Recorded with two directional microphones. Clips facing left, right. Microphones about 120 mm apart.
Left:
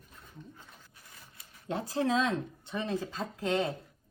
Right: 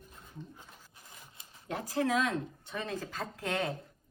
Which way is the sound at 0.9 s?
25° right (ahead or behind).